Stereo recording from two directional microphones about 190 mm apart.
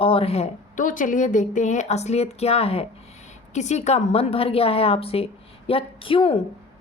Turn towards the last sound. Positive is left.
turn(degrees=30)  # may be behind; listen again after turning